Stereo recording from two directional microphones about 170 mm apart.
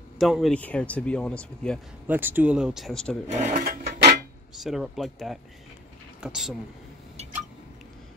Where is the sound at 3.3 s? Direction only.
50° right (ahead or behind).